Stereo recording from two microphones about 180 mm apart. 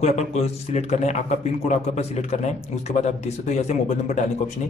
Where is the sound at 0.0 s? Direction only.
35° left (ahead or behind).